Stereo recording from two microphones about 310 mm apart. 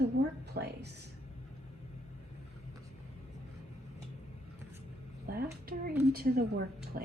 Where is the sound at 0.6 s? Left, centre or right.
Right.